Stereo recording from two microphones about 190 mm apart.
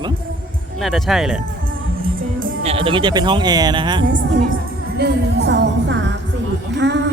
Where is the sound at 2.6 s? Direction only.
30° right (ahead or behind).